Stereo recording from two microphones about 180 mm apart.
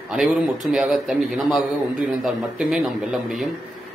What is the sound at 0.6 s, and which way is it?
A man's voice, centre (ahead or behind).